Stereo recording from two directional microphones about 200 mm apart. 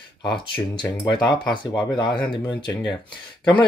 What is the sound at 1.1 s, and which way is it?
Speech, 20° left (ahead or behind).